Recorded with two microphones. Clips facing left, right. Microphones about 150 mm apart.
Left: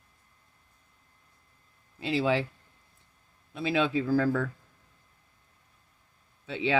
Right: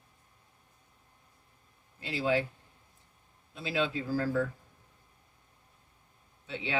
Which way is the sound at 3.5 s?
70° left (ahead or behind).